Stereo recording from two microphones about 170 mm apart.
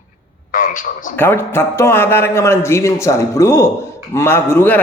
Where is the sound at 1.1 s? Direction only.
15° left (ahead or behind).